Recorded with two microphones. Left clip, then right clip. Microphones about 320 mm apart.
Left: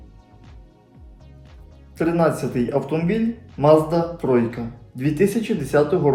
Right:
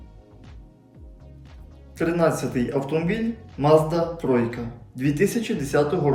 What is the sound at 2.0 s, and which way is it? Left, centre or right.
Speech, centre.